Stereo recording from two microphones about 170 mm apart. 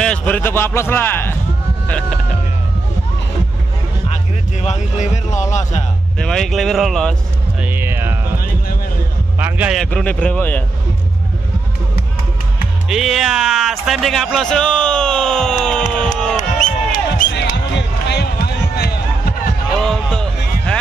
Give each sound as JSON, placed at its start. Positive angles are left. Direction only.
{"t": 0.0, "sound": "speech", "side_deg": 5}
{"t": 4.6, "sound": "speech", "side_deg": 40}
{"t": 6.1, "sound": "speech", "side_deg": 5}
{"t": 7.6, "sound": "music", "side_deg": -15}
{"t": 9.4, "sound": "music", "side_deg": -10}
{"t": 9.8, "sound": "speech", "side_deg": 5}
{"t": 12.8, "sound": "speech", "side_deg": 0}
{"t": 16.3, "sound": "basketball bounce", "side_deg": 50}
{"t": 17.4, "sound": "music", "side_deg": 80}
{"t": 19.8, "sound": "music", "side_deg": 5}